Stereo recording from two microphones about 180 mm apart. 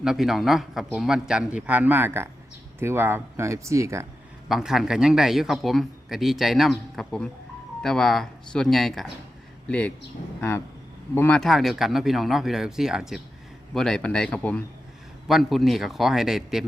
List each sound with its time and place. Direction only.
0.0 s speech: 5° right (ahead or behind)
4.4 s speech: centre (ahead or behind)
11.1 s speech: 15° left (ahead or behind)
11.3 s speech: centre (ahead or behind)